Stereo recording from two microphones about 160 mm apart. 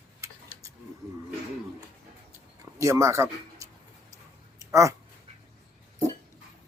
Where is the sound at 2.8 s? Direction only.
20° right (ahead or behind).